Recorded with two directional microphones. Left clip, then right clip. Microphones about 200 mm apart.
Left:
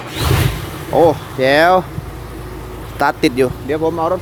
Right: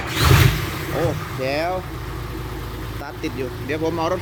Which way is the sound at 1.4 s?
50° left (ahead or behind).